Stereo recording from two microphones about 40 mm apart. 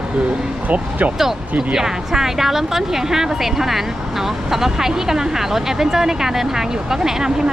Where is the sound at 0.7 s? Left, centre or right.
Right.